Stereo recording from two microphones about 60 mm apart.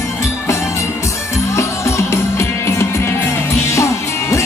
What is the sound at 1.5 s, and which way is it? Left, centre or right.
Music, left.